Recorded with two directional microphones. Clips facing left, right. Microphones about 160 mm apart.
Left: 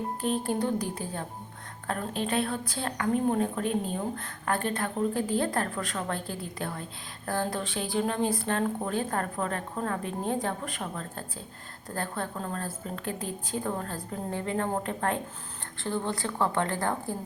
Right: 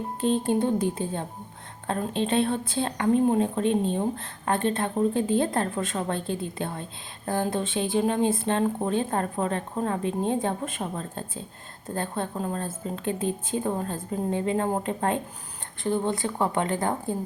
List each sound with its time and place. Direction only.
0.2 s a woman's voice: 25° right (ahead or behind)